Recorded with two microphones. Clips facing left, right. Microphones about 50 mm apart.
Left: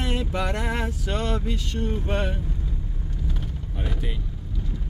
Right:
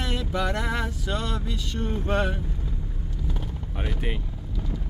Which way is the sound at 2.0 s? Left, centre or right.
Centre.